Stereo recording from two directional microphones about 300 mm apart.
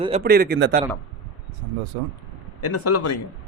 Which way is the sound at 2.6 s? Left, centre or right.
Left.